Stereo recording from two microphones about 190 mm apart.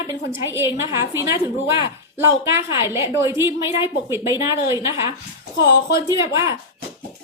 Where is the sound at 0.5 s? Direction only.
15° right (ahead or behind).